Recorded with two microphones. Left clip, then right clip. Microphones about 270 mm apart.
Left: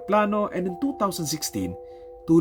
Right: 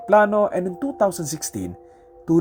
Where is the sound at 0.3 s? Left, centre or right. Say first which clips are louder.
Right 6 dB; centre.